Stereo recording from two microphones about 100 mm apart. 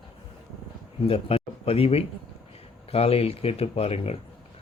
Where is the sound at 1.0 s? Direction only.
75° left (ahead or behind).